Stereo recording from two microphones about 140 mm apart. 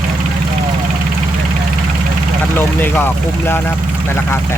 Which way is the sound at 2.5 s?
15° left (ahead or behind).